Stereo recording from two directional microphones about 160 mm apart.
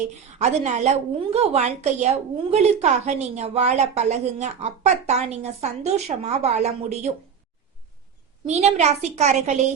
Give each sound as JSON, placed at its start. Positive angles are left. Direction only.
{"t": 0.3, "sound": "a woman's voice", "side_deg": -45}
{"t": 8.4, "sound": "a woman's voice", "side_deg": -45}